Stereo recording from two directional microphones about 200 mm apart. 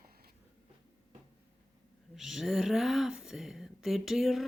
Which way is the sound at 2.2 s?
Centre (ahead or behind).